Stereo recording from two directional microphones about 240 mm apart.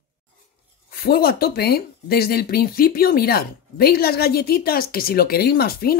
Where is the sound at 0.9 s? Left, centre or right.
Left.